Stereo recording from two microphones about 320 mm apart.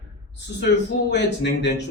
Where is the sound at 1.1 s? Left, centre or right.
Left.